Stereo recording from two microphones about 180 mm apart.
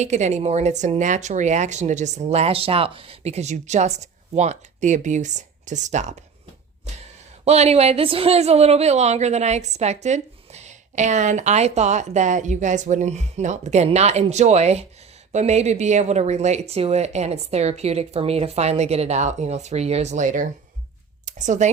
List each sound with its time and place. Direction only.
0.0 s a woman's voice: 40° right (ahead or behind)
7.4 s a woman's voice: 35° right (ahead or behind)